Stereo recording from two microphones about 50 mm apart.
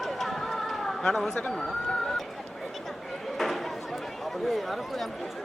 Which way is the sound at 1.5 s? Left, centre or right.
Centre.